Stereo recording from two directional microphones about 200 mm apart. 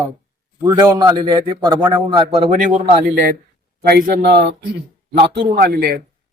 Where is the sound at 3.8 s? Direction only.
50° right (ahead or behind).